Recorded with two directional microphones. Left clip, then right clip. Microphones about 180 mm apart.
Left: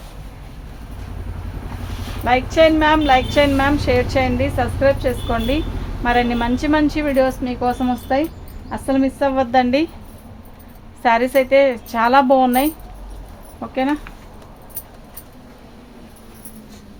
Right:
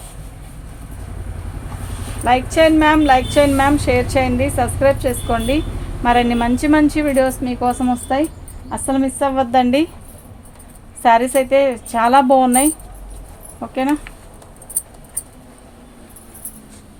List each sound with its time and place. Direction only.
2.2 s a woman's voice: 25° right (ahead or behind)
11.0 s a woman's voice: 20° right (ahead or behind)